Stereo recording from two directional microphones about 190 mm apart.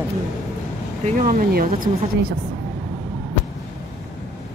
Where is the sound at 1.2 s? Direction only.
45° right (ahead or behind).